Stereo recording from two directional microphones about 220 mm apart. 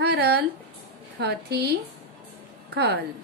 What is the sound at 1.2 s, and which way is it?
A woman's voice, 45° right (ahead or behind).